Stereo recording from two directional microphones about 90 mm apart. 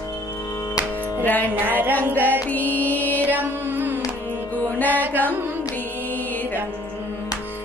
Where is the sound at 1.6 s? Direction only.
20° right (ahead or behind).